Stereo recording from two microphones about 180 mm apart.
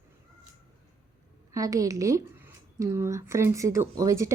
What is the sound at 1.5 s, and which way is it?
Speech, 20° right (ahead or behind).